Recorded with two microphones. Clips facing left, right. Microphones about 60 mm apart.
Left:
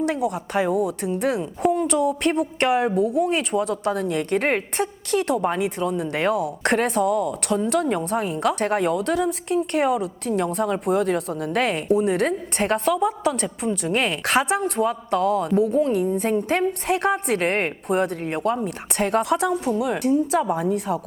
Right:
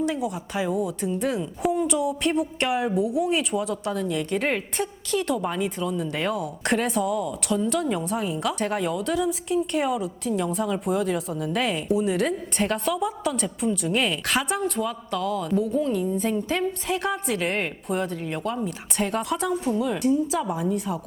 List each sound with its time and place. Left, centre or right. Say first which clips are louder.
0.0 s a woman's voice: left 3 dB; left